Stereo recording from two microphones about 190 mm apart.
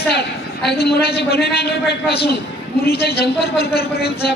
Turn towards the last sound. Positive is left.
turn(degrees=55)  # may be behind; listen again after turning